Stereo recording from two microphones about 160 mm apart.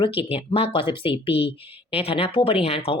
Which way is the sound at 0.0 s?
35° left (ahead or behind).